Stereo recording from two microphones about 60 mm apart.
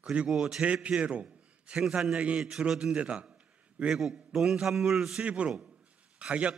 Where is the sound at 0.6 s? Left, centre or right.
Right.